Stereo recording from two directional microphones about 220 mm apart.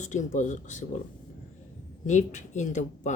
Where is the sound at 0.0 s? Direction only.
35° left (ahead or behind).